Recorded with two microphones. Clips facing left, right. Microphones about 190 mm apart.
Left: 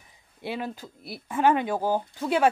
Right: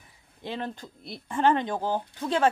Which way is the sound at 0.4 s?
10° left (ahead or behind).